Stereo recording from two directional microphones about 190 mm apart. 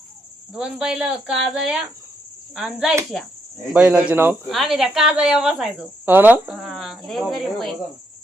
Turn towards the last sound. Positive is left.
turn(degrees=0)  # may be behind; listen again after turning